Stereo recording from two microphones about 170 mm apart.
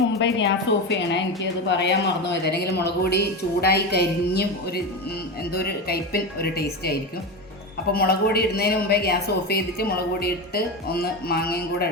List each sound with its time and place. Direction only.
0.2 s a woman's voice: 90° left; by 6.9 s 65° left (ahead or behind)
7.9 s a woman's voice: 65° left (ahead or behind)